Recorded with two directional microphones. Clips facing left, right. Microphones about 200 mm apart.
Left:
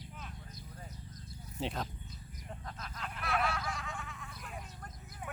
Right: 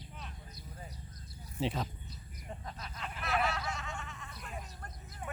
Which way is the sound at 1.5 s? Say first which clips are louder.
Right 3 dB; centre (ahead or behind).